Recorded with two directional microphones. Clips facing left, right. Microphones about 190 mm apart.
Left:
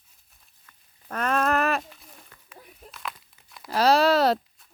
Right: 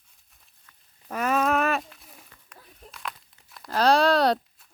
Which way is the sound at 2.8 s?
Centre (ahead or behind).